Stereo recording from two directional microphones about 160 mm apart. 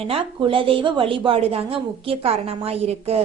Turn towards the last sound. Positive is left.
turn(degrees=-40)  # may be behind; listen again after turning